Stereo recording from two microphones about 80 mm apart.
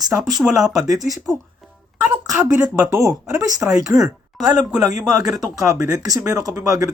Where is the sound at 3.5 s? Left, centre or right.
Centre.